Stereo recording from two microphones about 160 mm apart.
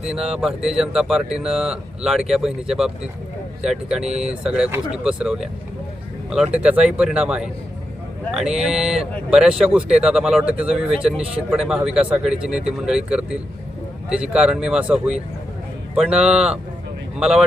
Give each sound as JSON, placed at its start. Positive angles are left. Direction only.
{"t": 0.0, "sound": "speech", "side_deg": -5}